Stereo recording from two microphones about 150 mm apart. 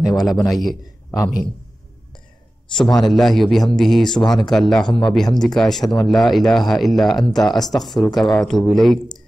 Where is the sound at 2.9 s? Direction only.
Centre (ahead or behind).